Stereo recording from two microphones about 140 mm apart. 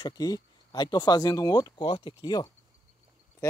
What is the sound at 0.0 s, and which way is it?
Speech, 25° left (ahead or behind).